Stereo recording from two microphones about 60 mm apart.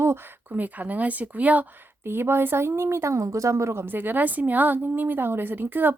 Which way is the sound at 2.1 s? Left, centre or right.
Right.